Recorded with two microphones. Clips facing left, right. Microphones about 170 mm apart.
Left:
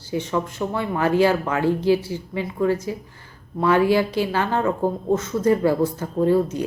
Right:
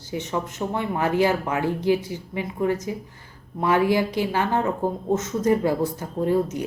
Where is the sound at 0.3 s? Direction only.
20° right (ahead or behind).